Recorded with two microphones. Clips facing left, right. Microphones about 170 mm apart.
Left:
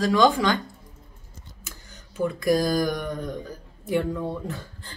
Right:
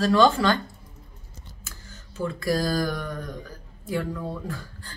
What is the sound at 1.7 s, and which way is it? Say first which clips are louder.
Speech: left 2 dB; 15° left (ahead or behind).